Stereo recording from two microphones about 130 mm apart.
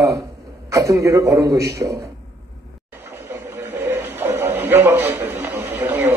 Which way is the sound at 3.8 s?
20° right (ahead or behind).